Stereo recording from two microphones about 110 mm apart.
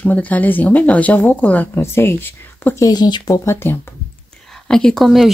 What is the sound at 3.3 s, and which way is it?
Speech, 25° left (ahead or behind).